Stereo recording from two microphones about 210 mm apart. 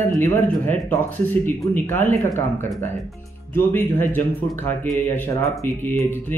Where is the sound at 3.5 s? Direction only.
10° left (ahead or behind).